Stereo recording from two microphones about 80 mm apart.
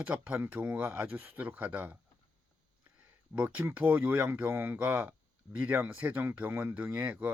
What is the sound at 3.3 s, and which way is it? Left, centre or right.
Speech, centre.